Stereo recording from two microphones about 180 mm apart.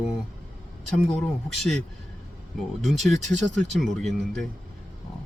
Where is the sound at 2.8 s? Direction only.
Centre (ahead or behind).